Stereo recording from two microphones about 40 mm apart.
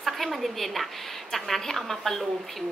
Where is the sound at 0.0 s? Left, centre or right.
Centre.